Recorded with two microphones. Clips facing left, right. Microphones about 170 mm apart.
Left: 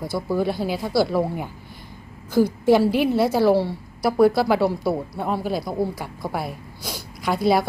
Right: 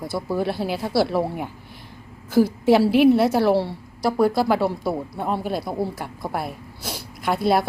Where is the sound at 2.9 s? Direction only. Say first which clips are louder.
Right 5 dB; 65° right (ahead or behind).